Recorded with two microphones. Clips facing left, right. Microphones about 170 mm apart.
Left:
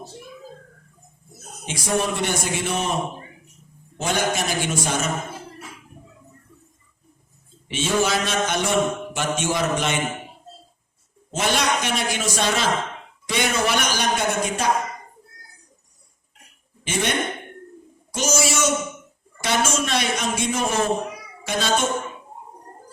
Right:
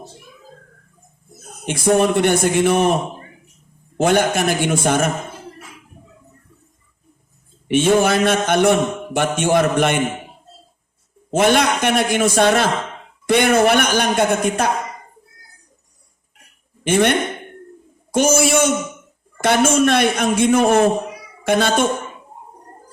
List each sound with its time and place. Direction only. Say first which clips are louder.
1.6 s a man's voice: right 8 dB; 55° right (ahead or behind)
7.7 s a man's voice: right 7 dB; 55° right (ahead or behind)
11.3 s a man's voice: right 7 dB; 55° right (ahead or behind)
16.8 s a man's voice: right 8 dB; 55° right (ahead or behind)